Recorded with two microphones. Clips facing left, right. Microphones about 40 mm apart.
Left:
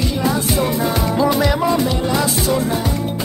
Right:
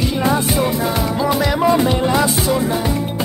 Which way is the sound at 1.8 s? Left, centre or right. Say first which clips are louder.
Right 3 dB; centre.